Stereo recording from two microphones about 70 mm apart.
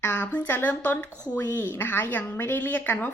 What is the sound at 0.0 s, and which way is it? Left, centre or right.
Speech, left.